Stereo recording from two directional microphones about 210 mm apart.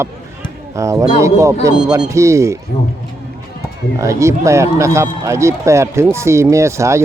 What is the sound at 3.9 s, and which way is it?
Speech, 15° right (ahead or behind).